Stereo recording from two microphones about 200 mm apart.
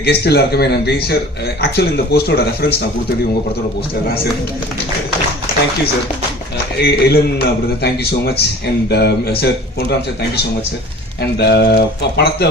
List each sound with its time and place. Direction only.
0.0 s a man's voice: 55° left (ahead or behind)
6.8 s a man's voice: 50° left (ahead or behind)
11.3 s speech: 55° left (ahead or behind)